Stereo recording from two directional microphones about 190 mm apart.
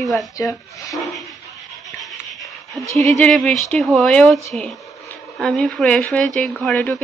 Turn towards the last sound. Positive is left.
turn(degrees=10)  # may be behind; listen again after turning